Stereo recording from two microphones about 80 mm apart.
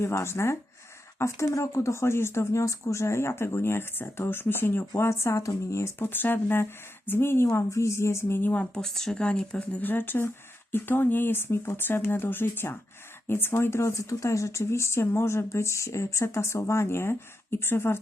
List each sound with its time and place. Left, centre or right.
0.0 s speech: left
8.7 s speech: centre
9.8 s speech: left